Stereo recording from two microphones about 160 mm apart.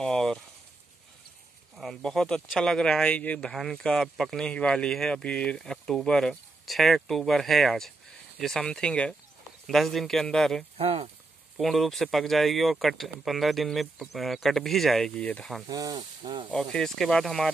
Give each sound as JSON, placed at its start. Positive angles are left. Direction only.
{"t": 0.0, "sound": "a sound", "side_deg": 5}
{"t": 1.8, "sound": "speech", "side_deg": 5}
{"t": 10.8, "sound": "speech", "side_deg": -35}
{"t": 11.5, "sound": "speech", "side_deg": 0}
{"t": 15.6, "sound": "speech", "side_deg": -25}
{"t": 16.5, "sound": "speech", "side_deg": 5}